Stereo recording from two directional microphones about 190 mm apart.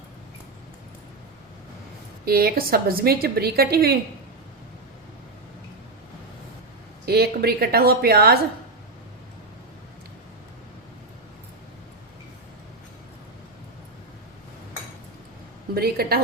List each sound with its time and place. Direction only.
2.2 s a woman's voice: 55° right (ahead or behind)
7.0 s a woman's voice: 55° right (ahead or behind)
15.7 s a woman's voice: 55° right (ahead or behind)